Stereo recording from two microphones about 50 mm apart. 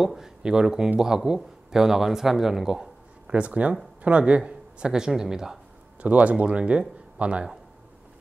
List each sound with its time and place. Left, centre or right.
0.0 s speech: centre
3.3 s speech: right
5.9 s a man's voice: right